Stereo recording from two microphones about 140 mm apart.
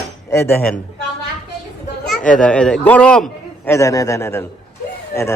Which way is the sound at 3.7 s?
25° left (ahead or behind).